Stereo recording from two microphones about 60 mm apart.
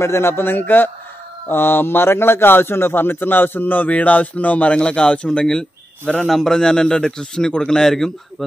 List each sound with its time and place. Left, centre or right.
0.0 s a man's voice: left; by 8.5 s centre